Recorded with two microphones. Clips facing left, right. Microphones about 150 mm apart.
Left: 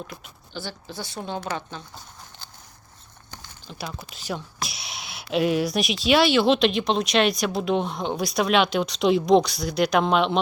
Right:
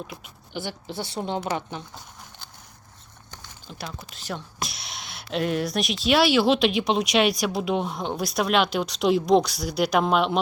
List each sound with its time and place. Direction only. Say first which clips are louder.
0.5 s a woman's voice: right 3 dB; 20° right (ahead or behind)
3.3 s speech: left 1 dB; centre (ahead or behind)